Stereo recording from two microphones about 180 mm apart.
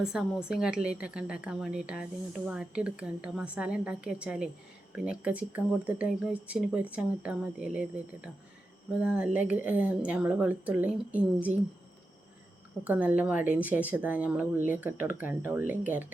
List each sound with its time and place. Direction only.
0.0 s a woman's voice: 5° right (ahead or behind)
9.0 s speech: 5° right (ahead or behind)
12.8 s speech: 10° right (ahead or behind)